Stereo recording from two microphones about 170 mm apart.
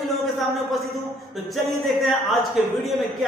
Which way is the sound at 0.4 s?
Centre (ahead or behind).